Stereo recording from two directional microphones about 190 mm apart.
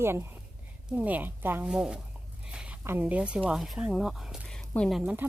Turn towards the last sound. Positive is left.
turn(degrees=-5)  # may be behind; listen again after turning